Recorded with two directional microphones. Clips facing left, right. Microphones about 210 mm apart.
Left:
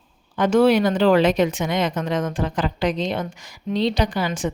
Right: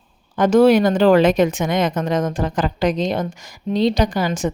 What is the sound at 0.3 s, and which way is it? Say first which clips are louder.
A woman's voice: right 3 dB; 45° right (ahead or behind).